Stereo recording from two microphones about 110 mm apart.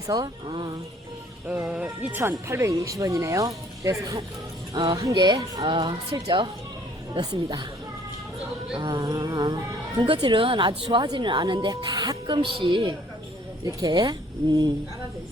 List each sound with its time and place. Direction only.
0.1 s a woman's voice: 45° right (ahead or behind)
1.6 s speech: 10° right (ahead or behind)
2.3 s speech: 25° right (ahead or behind)
5.7 s a woman's voice: 50° right (ahead or behind)
6.1 s speech: 35° right (ahead or behind)
8.7 s music: 50° right (ahead or behind)
9.0 s a woman's voice: 35° right (ahead or behind)